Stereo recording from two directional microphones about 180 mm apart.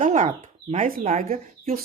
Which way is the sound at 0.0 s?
45° right (ahead or behind).